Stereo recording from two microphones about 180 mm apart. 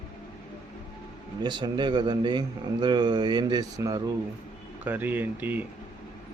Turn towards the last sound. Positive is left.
turn(degrees=-10)  # may be behind; listen again after turning